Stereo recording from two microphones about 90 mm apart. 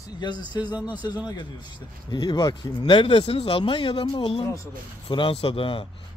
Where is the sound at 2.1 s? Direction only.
55° left (ahead or behind).